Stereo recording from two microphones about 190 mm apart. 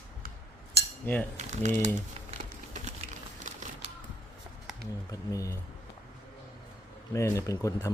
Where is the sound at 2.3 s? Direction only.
40° right (ahead or behind).